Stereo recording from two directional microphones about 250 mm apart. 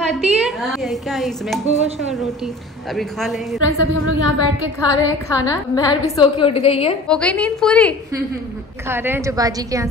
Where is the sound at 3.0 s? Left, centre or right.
Centre.